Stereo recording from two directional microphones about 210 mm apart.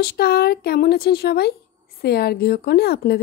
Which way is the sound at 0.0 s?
45° left (ahead or behind).